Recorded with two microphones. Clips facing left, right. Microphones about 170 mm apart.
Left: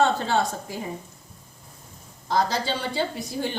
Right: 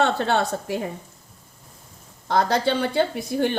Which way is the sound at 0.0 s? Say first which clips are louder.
Right 1 dB; 65° right (ahead or behind).